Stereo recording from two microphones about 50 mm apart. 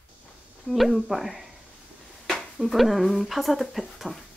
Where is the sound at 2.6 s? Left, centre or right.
Centre.